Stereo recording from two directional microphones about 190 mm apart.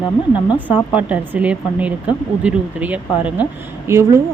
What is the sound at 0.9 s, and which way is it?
A woman's voice, 5° right (ahead or behind).